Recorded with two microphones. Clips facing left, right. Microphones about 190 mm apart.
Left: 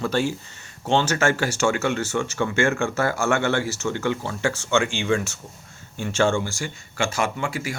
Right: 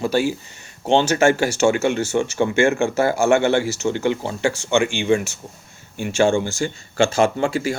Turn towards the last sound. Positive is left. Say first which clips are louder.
# right 7 dB
turn(degrees=-30)  # may be behind; listen again after turning